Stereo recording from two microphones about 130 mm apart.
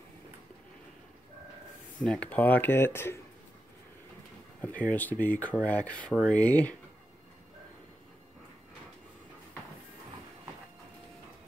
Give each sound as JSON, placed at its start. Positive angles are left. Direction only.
{"t": 2.0, "sound": "speech", "side_deg": 10}
{"t": 4.6, "sound": "speech", "side_deg": 10}